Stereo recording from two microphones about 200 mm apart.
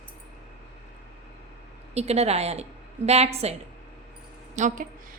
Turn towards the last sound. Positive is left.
turn(degrees=-40)  # may be behind; listen again after turning